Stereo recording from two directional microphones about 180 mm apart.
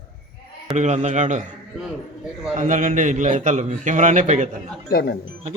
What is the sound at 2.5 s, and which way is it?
A man's voice, 45° right (ahead or behind).